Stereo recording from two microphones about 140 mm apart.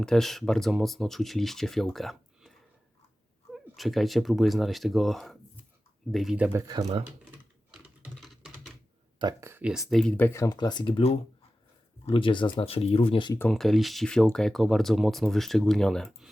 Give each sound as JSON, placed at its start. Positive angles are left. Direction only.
{"t": 0.0, "sound": "speech", "side_deg": 5}
{"t": 6.6, "sound": "speech", "side_deg": -25}
{"t": 7.7, "sound": "computer keyboard", "side_deg": -5}
{"t": 8.1, "sound": "typing", "side_deg": 0}
{"t": 9.4, "sound": "speech", "side_deg": -15}
{"t": 9.9, "sound": "speech", "side_deg": 5}
{"t": 13.5, "sound": "speech", "side_deg": 0}